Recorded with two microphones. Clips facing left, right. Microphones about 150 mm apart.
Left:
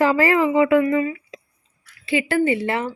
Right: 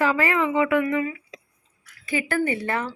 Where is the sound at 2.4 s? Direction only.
20° left (ahead or behind).